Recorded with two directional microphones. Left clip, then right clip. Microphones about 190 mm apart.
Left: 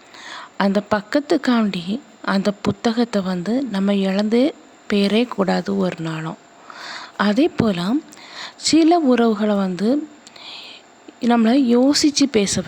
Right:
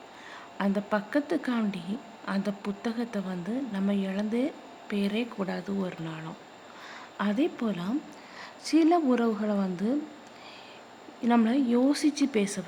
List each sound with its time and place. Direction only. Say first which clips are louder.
0.3 s a woman's voice: left 11 dB; 35° left (ahead or behind)
11.2 s a woman's voice: left 9 dB; 30° left (ahead or behind)